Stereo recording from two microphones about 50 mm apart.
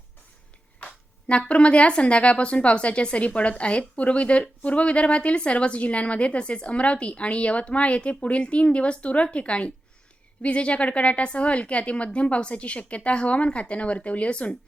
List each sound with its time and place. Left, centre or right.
1.3 s speech: left